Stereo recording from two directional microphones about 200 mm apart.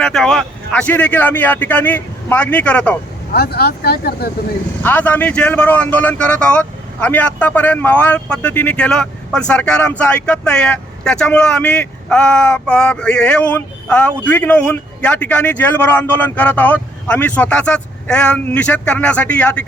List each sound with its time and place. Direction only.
0.0 s speech: centre (ahead or behind)
3.3 s speech: 50° left (ahead or behind)
4.8 s speech: 10° left (ahead or behind)